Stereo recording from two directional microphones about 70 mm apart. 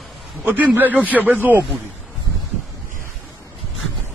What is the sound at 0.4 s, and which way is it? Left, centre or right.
Speech, right.